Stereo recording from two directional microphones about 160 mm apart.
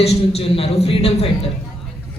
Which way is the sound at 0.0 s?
40° left (ahead or behind).